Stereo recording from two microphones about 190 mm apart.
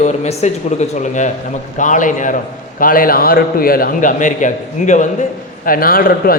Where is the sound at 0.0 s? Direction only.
35° left (ahead or behind).